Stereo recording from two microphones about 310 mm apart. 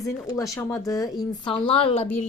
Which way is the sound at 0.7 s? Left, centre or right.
Centre.